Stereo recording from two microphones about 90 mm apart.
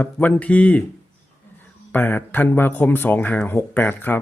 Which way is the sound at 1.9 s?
20° left (ahead or behind).